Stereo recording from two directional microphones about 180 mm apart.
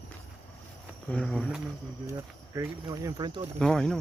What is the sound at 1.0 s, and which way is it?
Speech, 5° left (ahead or behind).